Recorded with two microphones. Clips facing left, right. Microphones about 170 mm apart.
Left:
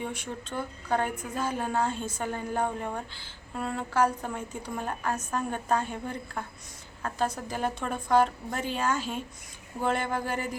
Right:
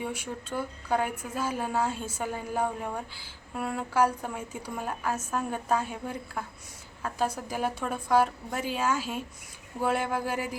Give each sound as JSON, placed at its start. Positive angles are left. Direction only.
{"t": 0.0, "sound": "a woman's voice", "side_deg": -10}